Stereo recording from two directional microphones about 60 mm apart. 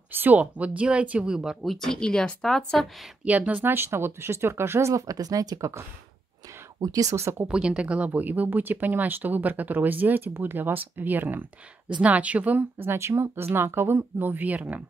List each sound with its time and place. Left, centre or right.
0.1 s speech: right
0.4 s speech: right
1.3 s speech: centre
1.6 s speech: centre
3.3 s speech: right
3.6 s speech: right
6.8 s speech: right
7.2 s speech: right
7.4 s speech: centre; by 11.4 s right
12.0 s speech: right
12.7 s speech: right